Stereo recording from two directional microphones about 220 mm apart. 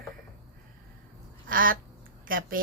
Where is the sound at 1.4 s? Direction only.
40° right (ahead or behind).